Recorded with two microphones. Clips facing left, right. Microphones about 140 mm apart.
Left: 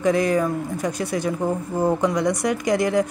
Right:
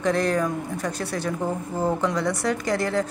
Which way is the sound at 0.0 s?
10° left (ahead or behind).